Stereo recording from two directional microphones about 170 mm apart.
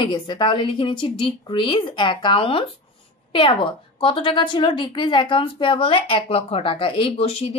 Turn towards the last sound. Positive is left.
turn(degrees=35)  # may be behind; listen again after turning